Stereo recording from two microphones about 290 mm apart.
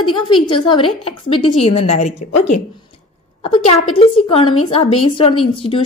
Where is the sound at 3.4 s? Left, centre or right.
Centre.